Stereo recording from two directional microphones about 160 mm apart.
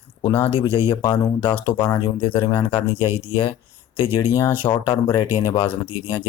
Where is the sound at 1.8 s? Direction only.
30° left (ahead or behind).